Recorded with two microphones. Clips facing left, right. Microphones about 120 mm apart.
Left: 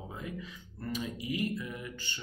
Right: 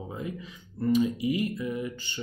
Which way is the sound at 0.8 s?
20° right (ahead or behind).